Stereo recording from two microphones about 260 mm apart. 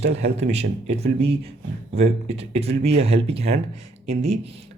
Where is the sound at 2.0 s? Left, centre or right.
Right.